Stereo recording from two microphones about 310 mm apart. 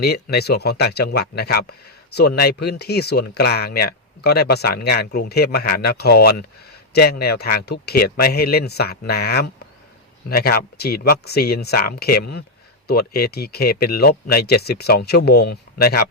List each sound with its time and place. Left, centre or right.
0.0 s speech: left